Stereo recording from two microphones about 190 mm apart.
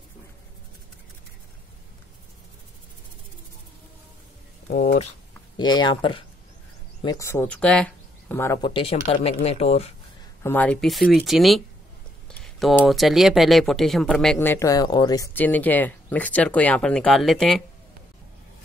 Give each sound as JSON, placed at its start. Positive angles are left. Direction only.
{"t": 4.6, "sound": "speech", "side_deg": 35}
{"t": 5.6, "sound": "speech", "side_deg": 20}
{"t": 8.6, "sound": "speech", "side_deg": 30}
{"t": 10.4, "sound": "speech", "side_deg": 10}